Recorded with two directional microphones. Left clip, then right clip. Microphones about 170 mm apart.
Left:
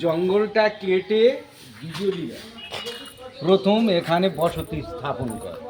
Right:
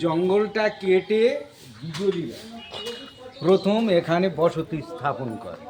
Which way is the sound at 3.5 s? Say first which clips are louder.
Left 1 dB; 10° right (ahead or behind).